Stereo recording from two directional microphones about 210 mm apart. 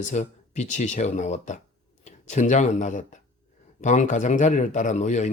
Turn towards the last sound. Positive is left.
turn(degrees=35)  # may be behind; listen again after turning